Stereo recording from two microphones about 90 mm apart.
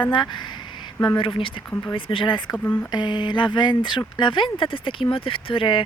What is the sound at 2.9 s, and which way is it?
Speech, 55° left (ahead or behind).